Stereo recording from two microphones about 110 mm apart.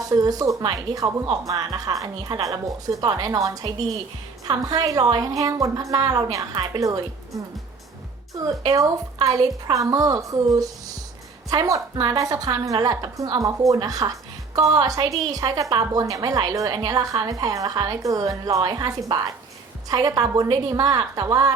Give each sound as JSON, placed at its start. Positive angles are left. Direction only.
{"t": 0.0, "sound": "a woman's voice", "side_deg": -35}